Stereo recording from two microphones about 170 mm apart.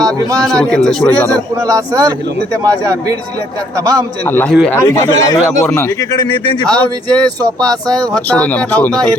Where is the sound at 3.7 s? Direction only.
25° right (ahead or behind).